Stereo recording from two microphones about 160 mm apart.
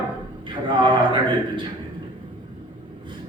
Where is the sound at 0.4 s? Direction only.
30° right (ahead or behind).